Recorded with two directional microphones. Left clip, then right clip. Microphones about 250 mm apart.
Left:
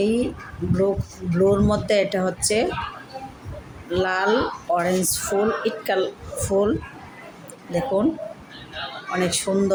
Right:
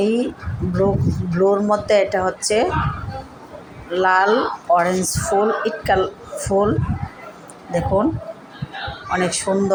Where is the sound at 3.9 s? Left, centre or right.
Centre.